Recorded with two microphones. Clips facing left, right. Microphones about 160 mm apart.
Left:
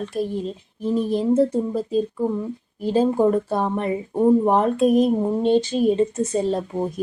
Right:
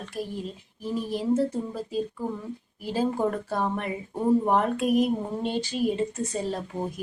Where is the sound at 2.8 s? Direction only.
25° left (ahead or behind).